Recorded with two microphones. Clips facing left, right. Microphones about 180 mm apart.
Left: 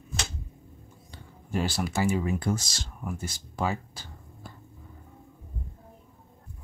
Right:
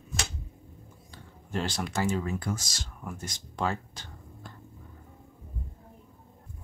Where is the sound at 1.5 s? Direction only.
5° left (ahead or behind).